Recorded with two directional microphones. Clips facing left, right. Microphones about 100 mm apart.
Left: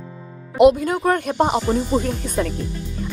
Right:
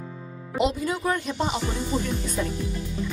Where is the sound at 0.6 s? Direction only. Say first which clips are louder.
Left 11 dB; 55° left (ahead or behind).